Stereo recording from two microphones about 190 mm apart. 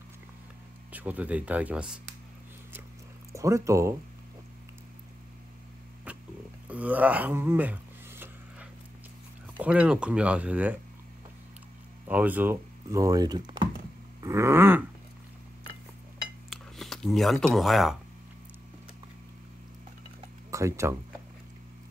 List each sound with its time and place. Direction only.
0.9 s speech: 10° right (ahead or behind)
3.3 s speech: 15° right (ahead or behind)
6.1 s music: 5° right (ahead or behind)
6.7 s a sound: 10° right (ahead or behind)
9.6 s speech: 5° right (ahead or behind)
12.1 s speech: 10° right (ahead or behind)
16.4 s a sound: centre (ahead or behind)
20.5 s speech: 15° right (ahead or behind)